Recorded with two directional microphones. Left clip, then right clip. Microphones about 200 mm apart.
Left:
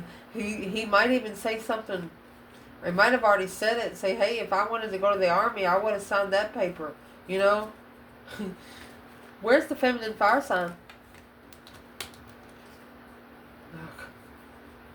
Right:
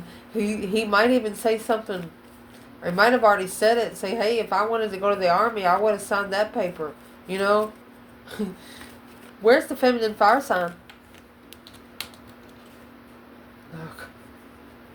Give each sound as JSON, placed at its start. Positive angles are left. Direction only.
{"t": 0.3, "sound": "a woman's voice", "side_deg": -40}
{"t": 9.4, "sound": "a woman's voice", "side_deg": -40}